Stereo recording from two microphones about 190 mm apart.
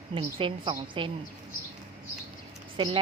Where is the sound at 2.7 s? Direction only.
25° right (ahead or behind).